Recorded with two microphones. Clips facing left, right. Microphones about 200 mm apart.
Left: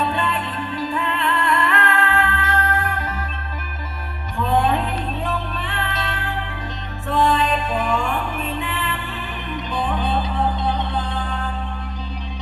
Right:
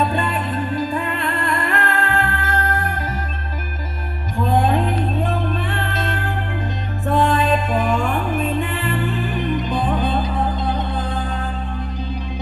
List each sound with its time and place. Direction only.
0.1 s music: 45° right (ahead or behind)
2.0 s music: 50° right (ahead or behind)
5.2 s music: 45° right (ahead or behind)